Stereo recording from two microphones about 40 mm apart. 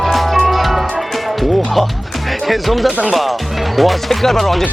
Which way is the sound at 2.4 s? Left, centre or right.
Centre.